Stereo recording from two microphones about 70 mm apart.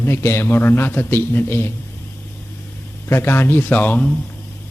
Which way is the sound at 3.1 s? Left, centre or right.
Left.